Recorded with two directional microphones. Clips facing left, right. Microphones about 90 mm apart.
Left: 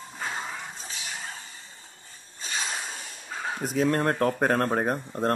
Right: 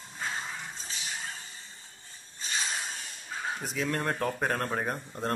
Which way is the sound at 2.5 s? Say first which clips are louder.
Left 2 dB; 35° left (ahead or behind).